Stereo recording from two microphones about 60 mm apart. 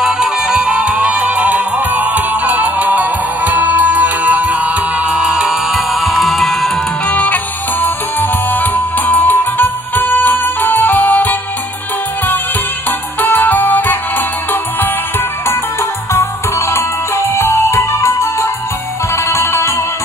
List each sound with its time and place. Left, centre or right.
0.0 s music: centre; by 4.7 s right
5.1 s music: centre
7.1 s music: left
13.2 s music: left
16.1 s music: left